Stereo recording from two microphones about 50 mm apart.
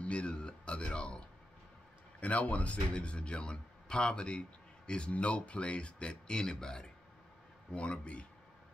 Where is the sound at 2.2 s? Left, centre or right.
Left.